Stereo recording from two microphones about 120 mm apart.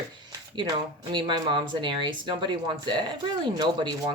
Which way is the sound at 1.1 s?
40° right (ahead or behind).